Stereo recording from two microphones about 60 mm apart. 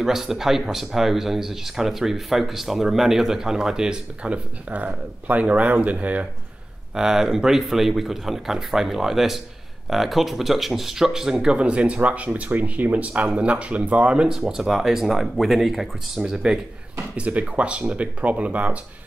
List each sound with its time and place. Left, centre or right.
0.0 s speech: centre; by 6.2 s right
7.0 s speech: centre
17.2 s speech: right